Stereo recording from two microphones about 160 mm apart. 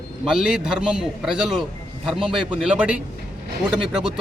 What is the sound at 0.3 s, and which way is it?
A man's voice, 5° right (ahead or behind).